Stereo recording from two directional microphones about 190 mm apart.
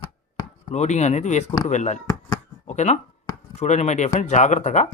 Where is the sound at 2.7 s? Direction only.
40° left (ahead or behind).